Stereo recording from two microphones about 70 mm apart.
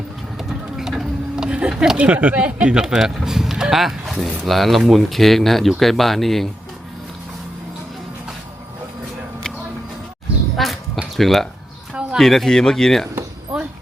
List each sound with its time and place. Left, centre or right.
0.3 s a sound: centre
4.4 s speech: centre
10.6 s quack: centre
11.2 s speech: centre
13.5 s music: centre